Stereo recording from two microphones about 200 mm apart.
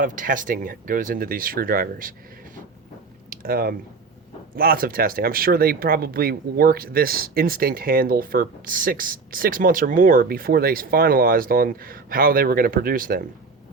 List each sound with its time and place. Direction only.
0.0 s speech: 40° right (ahead or behind)
3.2 s chewing: 45° right (ahead or behind)
4.5 s speech: 45° right (ahead or behind)